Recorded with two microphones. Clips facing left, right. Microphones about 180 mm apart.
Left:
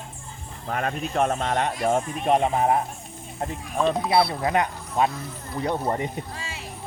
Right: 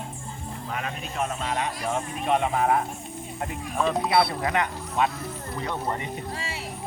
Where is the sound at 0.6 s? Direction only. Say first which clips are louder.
Left 7 dB; 45° left (ahead or behind).